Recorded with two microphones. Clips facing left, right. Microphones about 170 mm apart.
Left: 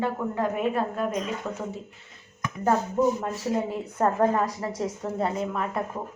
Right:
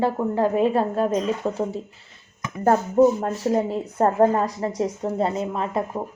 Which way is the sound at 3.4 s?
30° right (ahead or behind).